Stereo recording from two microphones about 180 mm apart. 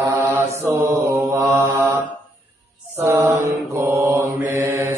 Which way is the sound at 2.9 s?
15° right (ahead or behind).